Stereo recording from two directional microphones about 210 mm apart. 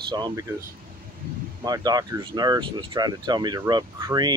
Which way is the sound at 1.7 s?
20° right (ahead or behind).